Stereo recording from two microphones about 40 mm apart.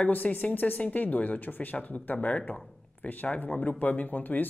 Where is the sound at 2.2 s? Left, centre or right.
Left.